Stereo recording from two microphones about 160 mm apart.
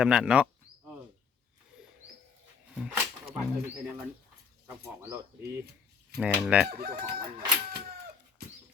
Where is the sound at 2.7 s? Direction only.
5° right (ahead or behind).